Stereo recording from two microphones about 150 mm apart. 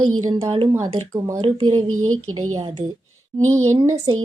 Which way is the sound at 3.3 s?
20° right (ahead or behind).